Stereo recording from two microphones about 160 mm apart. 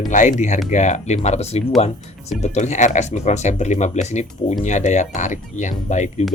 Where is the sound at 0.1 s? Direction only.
50° left (ahead or behind).